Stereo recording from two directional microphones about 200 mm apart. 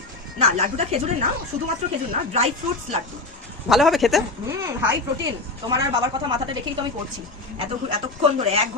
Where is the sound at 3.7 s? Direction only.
Centre (ahead or behind).